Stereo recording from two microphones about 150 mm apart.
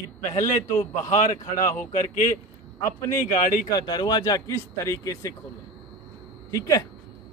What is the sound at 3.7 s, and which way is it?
Speech, 25° left (ahead or behind).